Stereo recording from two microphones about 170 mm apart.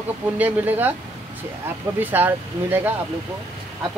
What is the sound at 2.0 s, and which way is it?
Speech, 10° right (ahead or behind).